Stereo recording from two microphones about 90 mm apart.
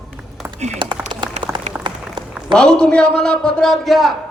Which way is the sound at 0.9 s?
55° right (ahead or behind).